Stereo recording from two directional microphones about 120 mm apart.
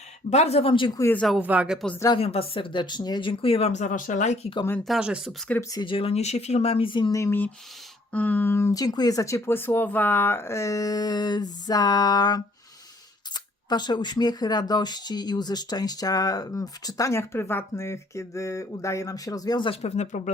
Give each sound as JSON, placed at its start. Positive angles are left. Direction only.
{"t": 0.3, "sound": "speech", "side_deg": 60}
{"t": 1.4, "sound": "speech", "side_deg": -10}
{"t": 2.1, "sound": "speech", "side_deg": 55}
{"t": 3.7, "sound": "speech", "side_deg": 85}
{"t": 4.8, "sound": "speech", "side_deg": -5}
{"t": 5.5, "sound": "speech", "side_deg": 10}
{"t": 5.8, "sound": "speech", "side_deg": 45}
{"t": 7.1, "sound": "speech", "side_deg": 20}
{"t": 19.8, "sound": "speech", "side_deg": 75}